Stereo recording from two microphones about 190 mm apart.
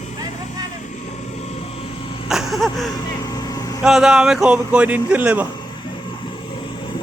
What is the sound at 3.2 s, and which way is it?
Vehicle, 20° left (ahead or behind).